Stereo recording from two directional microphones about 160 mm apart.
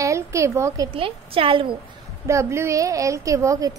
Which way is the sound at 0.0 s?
20° right (ahead or behind).